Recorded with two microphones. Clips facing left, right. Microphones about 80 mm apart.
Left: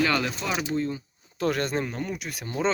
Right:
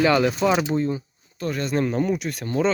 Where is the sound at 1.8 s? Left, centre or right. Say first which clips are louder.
Right 9 dB; centre.